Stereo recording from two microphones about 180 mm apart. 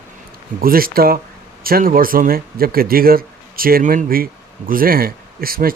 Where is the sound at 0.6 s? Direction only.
55° right (ahead or behind).